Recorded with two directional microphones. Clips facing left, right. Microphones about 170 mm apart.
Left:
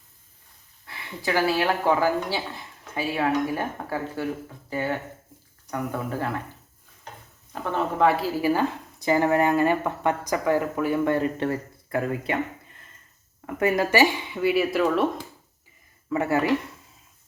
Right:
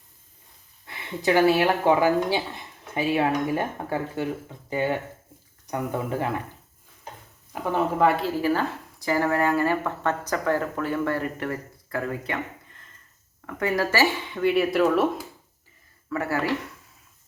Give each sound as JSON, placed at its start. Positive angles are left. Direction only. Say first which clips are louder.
{"t": 0.9, "sound": "speech", "louder": "right 5 dB", "side_deg": -20}
{"t": 7.5, "sound": "speech", "louder": "right 2 dB", "side_deg": -10}
{"t": 8.0, "sound": "a woman's voice", "louder": "left 2 dB", "side_deg": 5}
{"t": 14.4, "sound": "speech", "louder": "right 1 dB", "side_deg": 0}
{"t": 16.0, "sound": "speech", "louder": "left 4 dB", "side_deg": 20}